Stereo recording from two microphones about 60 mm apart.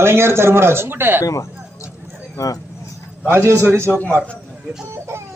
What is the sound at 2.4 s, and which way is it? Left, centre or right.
Speech, left.